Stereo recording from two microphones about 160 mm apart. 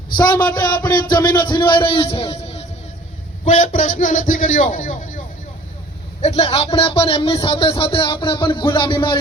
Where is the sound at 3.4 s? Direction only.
50° left (ahead or behind).